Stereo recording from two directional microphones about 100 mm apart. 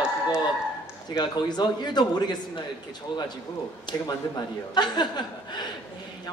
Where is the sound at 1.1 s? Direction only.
45° left (ahead or behind).